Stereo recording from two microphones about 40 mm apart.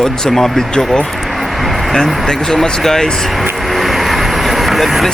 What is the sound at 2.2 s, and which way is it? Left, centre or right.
Speech, centre.